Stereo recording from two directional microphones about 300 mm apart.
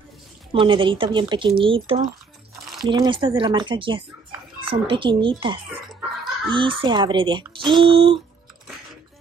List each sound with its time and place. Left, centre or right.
0.5 s speech: centre
2.5 s a sound: centre
2.8 s speech: centre